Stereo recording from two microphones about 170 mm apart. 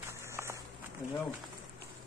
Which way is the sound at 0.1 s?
15° right (ahead or behind).